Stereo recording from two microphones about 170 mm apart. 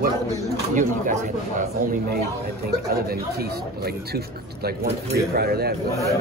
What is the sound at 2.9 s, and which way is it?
Speech, 65° right (ahead or behind).